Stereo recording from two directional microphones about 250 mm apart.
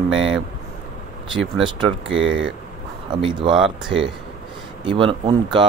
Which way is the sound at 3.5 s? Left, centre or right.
Centre.